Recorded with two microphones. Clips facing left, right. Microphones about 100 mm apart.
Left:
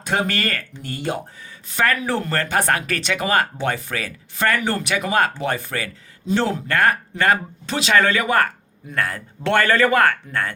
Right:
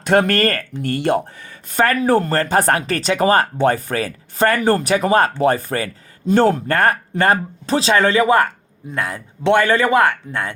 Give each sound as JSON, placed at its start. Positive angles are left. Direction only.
{"t": 0.0, "sound": "speech", "side_deg": -55}
{"t": 0.8, "sound": "speech", "side_deg": -60}
{"t": 1.7, "sound": "a man's voice", "side_deg": -35}